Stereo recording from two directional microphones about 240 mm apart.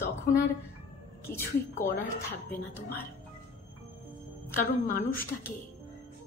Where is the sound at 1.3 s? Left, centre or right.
Left.